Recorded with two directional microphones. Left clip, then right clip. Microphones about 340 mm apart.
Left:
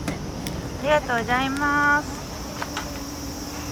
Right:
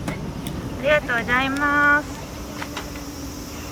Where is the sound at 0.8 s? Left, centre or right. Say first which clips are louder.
Right 2 dB; centre.